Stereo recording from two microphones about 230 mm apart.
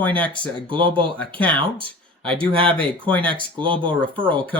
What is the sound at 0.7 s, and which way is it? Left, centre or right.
Speech, right.